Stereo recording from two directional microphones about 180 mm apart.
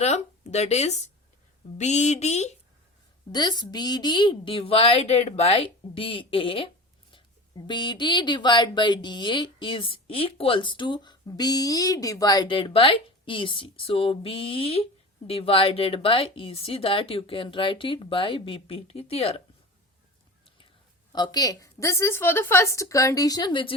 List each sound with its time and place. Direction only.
0.0 s speech: 40° left (ahead or behind)
3.3 s speech: 25° left (ahead or behind)
21.1 s a woman's voice: 20° left (ahead or behind)